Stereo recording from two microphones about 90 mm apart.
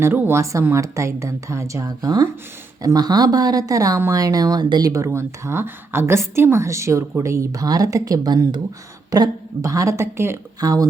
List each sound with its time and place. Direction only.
0.0 s a woman's voice: 25° right (ahead or behind)
10.6 s a woman's voice: 45° right (ahead or behind)